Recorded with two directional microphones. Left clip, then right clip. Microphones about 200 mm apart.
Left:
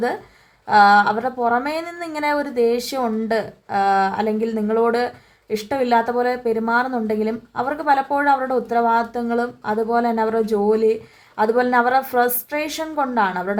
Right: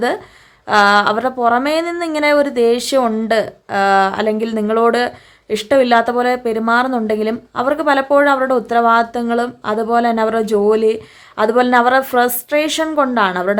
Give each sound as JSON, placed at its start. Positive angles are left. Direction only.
{"t": 0.7, "sound": "speech", "side_deg": -35}